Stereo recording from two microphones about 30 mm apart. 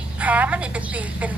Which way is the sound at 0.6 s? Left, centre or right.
Right.